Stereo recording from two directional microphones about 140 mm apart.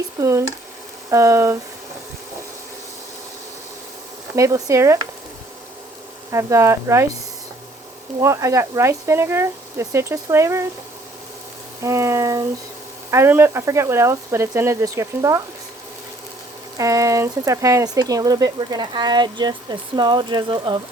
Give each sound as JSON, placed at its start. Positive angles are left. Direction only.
{"t": 0.2, "sound": "speech", "side_deg": -20}
{"t": 4.4, "sound": "speech", "side_deg": -20}
{"t": 6.3, "sound": "speech", "side_deg": -20}
{"t": 8.2, "sound": "speech", "side_deg": -20}
{"t": 11.8, "sound": "frying", "side_deg": -20}
{"t": 13.1, "sound": "speech", "side_deg": -20}
{"t": 16.7, "sound": "speech", "side_deg": -25}